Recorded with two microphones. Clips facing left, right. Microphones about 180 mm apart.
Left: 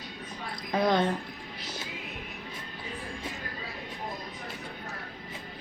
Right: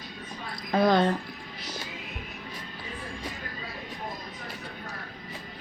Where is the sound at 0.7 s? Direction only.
20° left (ahead or behind).